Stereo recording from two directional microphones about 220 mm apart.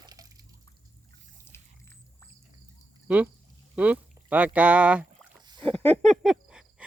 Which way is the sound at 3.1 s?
5° right (ahead or behind).